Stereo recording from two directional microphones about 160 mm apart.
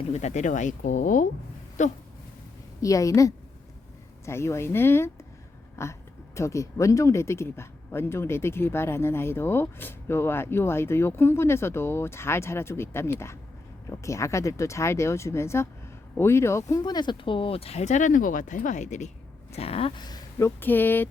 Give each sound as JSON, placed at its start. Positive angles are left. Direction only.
{"t": 0.1, "sound": "speech", "side_deg": 45}
{"t": 2.8, "sound": "a woman's voice", "side_deg": 20}
{"t": 20.0, "sound": "speech", "side_deg": 25}
{"t": 20.6, "sound": "speech", "side_deg": 10}